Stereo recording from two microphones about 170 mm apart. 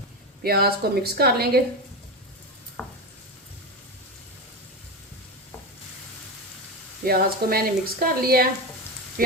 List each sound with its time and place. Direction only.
0.4 s speech: 65° right (ahead or behind)
2.8 s stir: 5° left (ahead or behind)
7.0 s speech: 60° right (ahead or behind)